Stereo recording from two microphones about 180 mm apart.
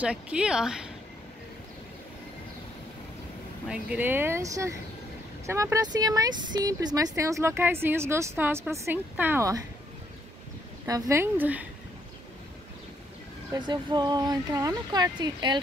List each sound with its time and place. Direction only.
0.0 s speech: 5° right (ahead or behind)
3.6 s speech: 5° right (ahead or behind)
10.9 s speech: 15° right (ahead or behind)
13.5 s speech: 25° right (ahead or behind)